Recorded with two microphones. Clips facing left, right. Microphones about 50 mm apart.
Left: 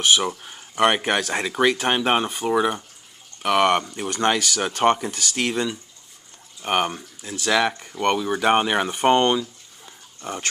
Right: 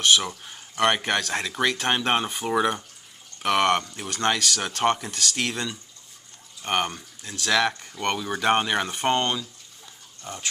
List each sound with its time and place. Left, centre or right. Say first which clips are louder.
0.0 s speech: left 2 dB; centre
9.8 s dog: left 6 dB; left